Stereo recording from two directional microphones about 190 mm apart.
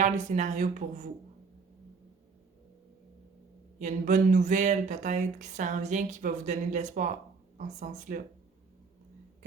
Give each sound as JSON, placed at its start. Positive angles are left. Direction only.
{"t": 0.3, "sound": "speech", "side_deg": -40}
{"t": 3.8, "sound": "speech", "side_deg": -40}